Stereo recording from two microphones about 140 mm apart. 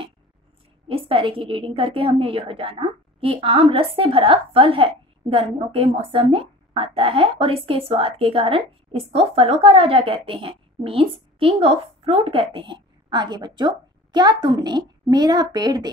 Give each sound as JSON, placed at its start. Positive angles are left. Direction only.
{"t": 0.8, "sound": "a woman's voice", "side_deg": -40}